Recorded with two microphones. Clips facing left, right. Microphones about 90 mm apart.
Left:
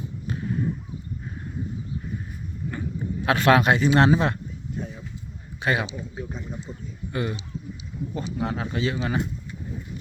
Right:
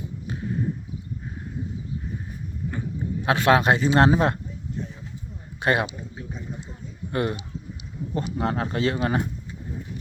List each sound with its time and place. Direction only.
3.2 s a man's voice: 20° right (ahead or behind)
3.6 s speech: 30° right (ahead or behind)
5.5 s a man's voice: 50° right (ahead or behind)
7.1 s speech: 50° right (ahead or behind)